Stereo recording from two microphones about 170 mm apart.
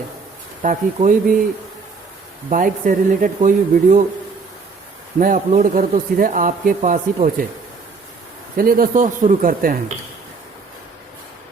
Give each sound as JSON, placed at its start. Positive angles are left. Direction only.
{"t": 0.6, "sound": "a man's voice", "side_deg": -50}
{"t": 2.5, "sound": "a man's voice", "side_deg": -50}
{"t": 5.2, "sound": "a man's voice", "side_deg": -50}
{"t": 8.5, "sound": "a man's voice", "side_deg": -60}